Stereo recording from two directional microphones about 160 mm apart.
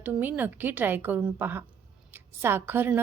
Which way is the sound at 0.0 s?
10° right (ahead or behind).